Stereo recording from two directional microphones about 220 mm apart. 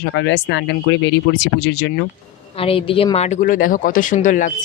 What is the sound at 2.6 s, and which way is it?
Speech, 25° left (ahead or behind).